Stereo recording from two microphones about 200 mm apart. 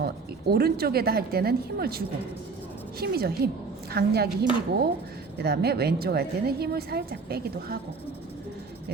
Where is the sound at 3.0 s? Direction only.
50° right (ahead or behind).